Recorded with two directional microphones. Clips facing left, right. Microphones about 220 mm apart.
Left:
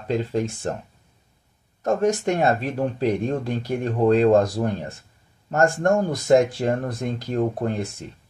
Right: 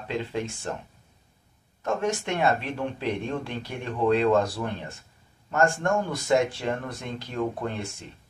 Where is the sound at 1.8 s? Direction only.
40° left (ahead or behind).